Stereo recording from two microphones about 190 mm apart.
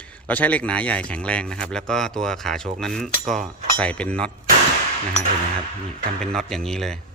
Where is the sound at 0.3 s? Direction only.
10° left (ahead or behind).